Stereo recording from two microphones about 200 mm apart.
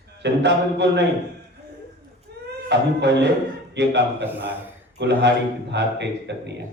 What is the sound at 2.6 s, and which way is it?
A man's voice, 60° right (ahead or behind).